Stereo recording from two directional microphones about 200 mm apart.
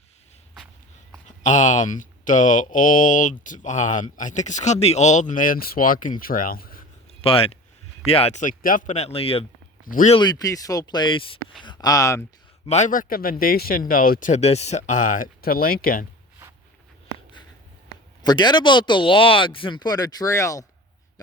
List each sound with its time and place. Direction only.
1.5 s speech: 40° left (ahead or behind)
7.2 s speech: 30° left (ahead or behind)
9.8 s speech: 40° left (ahead or behind)
10.2 s speech: 20° left (ahead or behind)
12.6 s a man's voice: 35° left (ahead or behind)
18.2 s speech: 20° left (ahead or behind)